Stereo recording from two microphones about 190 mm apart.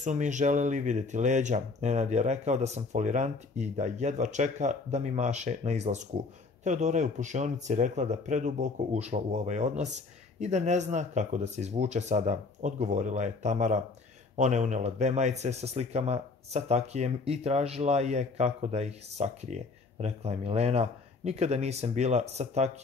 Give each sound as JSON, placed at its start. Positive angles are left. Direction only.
{"t": 0.0, "sound": "speech", "side_deg": -40}